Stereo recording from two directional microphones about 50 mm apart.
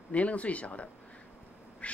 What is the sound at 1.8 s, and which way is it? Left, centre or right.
Duck, left.